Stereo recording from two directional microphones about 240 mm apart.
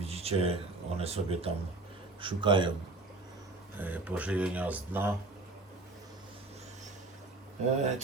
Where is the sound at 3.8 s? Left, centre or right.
Centre.